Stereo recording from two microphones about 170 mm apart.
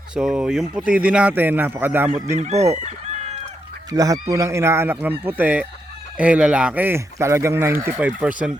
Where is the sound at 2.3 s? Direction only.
40° right (ahead or behind).